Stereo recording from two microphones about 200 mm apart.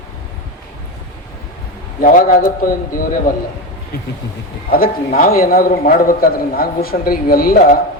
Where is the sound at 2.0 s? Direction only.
45° left (ahead or behind).